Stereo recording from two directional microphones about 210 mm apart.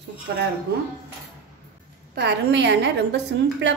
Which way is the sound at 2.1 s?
55° right (ahead or behind).